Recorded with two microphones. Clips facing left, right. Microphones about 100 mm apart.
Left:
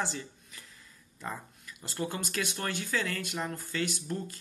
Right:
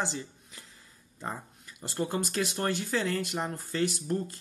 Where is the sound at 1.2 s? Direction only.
30° right (ahead or behind).